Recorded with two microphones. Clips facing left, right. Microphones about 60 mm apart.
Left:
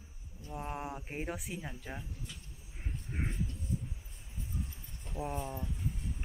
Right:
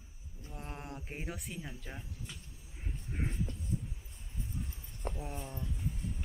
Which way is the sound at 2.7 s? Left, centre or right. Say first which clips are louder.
Left 1 dB; centre.